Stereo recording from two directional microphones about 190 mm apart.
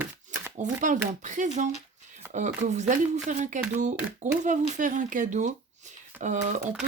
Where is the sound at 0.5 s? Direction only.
40° right (ahead or behind).